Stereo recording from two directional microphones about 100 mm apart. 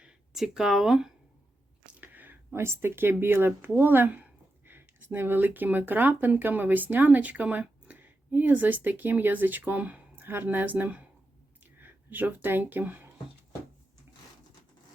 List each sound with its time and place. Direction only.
0.0 s speech: 5° right (ahead or behind)
1.9 s speech: 15° right (ahead or behind)